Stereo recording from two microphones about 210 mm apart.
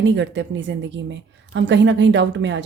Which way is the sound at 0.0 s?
60° right (ahead or behind).